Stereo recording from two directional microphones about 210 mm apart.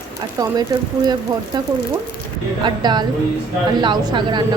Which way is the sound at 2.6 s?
20° right (ahead or behind).